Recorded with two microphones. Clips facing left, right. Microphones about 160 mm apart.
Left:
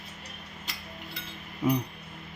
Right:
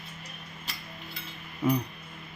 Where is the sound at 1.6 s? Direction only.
20° left (ahead or behind).